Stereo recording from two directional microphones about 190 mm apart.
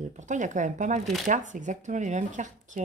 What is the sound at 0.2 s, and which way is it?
Speech, 40° right (ahead or behind).